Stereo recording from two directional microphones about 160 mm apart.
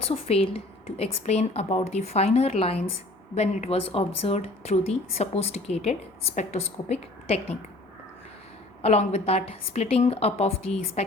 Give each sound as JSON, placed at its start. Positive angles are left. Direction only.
{"t": 0.1, "sound": "speech", "side_deg": 40}
{"t": 8.8, "sound": "speech", "side_deg": 45}